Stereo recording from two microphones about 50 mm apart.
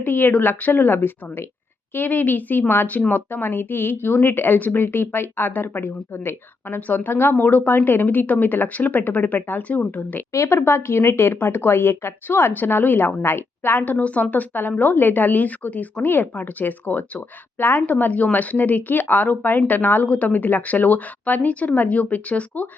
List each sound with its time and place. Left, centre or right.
0.0 s speech: left
6.7 s speech: left
10.3 s a woman's voice: left
10.6 s speech: left
13.9 s speech: left
17.6 s speech: left